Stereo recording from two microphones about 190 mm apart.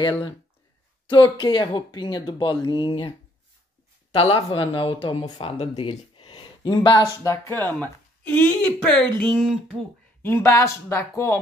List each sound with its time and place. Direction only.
1.0 s speech: 25° left (ahead or behind)
4.1 s speech: 30° left (ahead or behind); by 11.3 s 15° left (ahead or behind)